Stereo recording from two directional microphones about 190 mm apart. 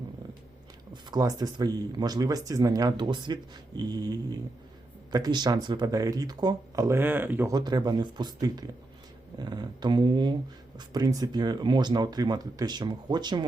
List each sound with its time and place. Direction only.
1.0 s speech: 20° right (ahead or behind)